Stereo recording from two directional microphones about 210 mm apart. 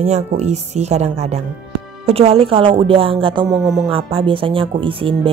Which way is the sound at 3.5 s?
Centre (ahead or behind).